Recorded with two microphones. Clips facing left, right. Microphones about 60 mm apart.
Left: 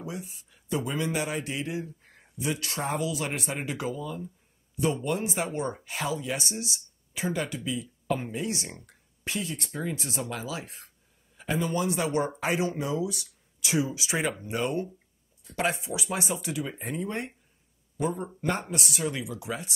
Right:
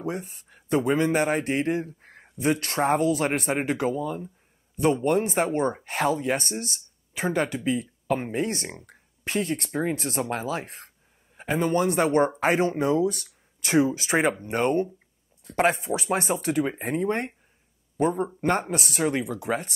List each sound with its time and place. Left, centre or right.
0.0 s speech: right